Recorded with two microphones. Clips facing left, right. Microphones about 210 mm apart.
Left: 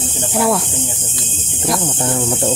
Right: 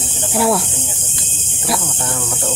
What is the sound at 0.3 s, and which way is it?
Snake, centre (ahead or behind).